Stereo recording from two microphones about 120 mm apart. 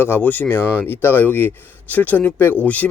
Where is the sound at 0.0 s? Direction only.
15° left (ahead or behind).